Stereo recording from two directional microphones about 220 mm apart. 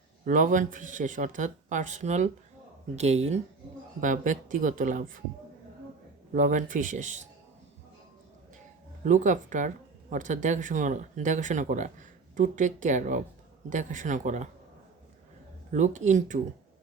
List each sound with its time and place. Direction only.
0.3 s speech: 35° right (ahead or behind)
6.3 s speech: 35° right (ahead or behind)
9.0 s speech: 35° right (ahead or behind)
15.7 s speech: 35° right (ahead or behind)